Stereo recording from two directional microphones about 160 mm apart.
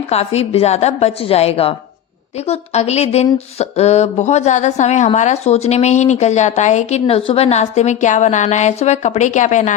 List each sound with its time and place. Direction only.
0.1 s a woman's voice: 40° left (ahead or behind)